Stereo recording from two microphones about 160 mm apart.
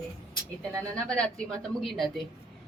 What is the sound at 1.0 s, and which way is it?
A woman's voice, 5° left (ahead or behind).